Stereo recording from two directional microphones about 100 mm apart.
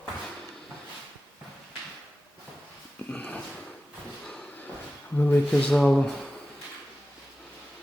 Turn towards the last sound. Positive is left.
turn(degrees=5)  # may be behind; listen again after turning